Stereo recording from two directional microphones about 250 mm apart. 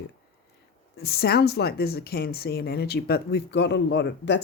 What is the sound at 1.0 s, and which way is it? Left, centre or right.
Speech, left.